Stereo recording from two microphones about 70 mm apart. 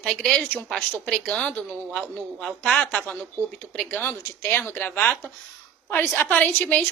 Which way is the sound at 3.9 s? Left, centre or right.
Left.